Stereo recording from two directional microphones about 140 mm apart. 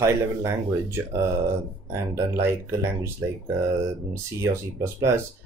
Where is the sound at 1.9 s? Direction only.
20° right (ahead or behind).